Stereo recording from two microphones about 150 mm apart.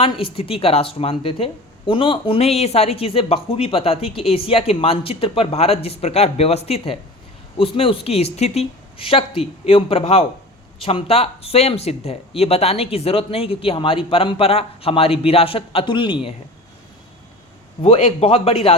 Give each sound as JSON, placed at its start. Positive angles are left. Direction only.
{"t": 0.0, "sound": "speech", "side_deg": 40}
{"t": 17.8, "sound": "speech", "side_deg": 40}